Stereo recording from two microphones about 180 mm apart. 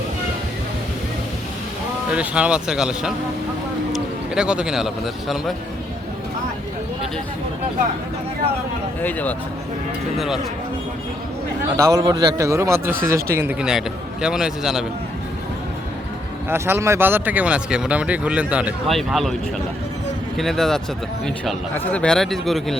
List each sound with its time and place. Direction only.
2.1 s a man's voice: 5° right (ahead or behind)
3.9 s bird: 5° right (ahead or behind)
9.0 s speech: 10° left (ahead or behind)
10.2 s a man's voice: centre (ahead or behind)
11.8 s a man's voice: 20° right (ahead or behind); by 14.8 s 5° right (ahead or behind)
16.5 s a man's voice: 15° right (ahead or behind); by 20.8 s centre (ahead or behind)
21.9 s a man's voice: 5° left (ahead or behind)